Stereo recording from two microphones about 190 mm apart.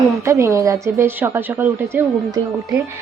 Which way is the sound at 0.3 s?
15° right (ahead or behind).